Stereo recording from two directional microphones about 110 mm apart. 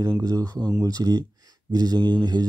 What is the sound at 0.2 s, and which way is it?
Speech, 35° right (ahead or behind).